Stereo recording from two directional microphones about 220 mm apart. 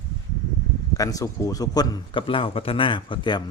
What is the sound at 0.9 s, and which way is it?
Speech, 15° left (ahead or behind).